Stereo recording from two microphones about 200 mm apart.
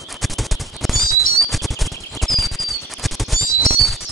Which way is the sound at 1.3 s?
Centre (ahead or behind).